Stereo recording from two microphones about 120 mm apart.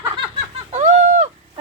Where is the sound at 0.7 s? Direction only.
80° right.